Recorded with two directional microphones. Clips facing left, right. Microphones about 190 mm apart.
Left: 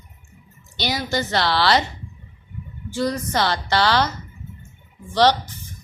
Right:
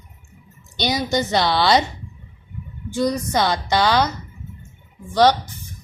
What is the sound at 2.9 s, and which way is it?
A woman's voice, 15° right (ahead or behind).